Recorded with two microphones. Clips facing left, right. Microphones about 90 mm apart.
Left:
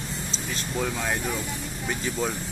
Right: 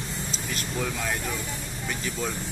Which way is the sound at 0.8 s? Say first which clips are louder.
Left 3 dB; 10° left (ahead or behind).